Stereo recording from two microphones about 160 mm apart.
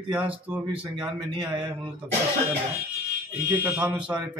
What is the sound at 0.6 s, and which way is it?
A man's voice, 30° right (ahead or behind).